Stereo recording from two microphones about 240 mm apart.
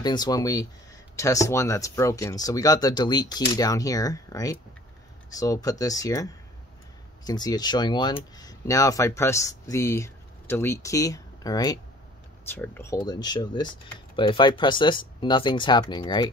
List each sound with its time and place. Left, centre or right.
0.0 s speech: centre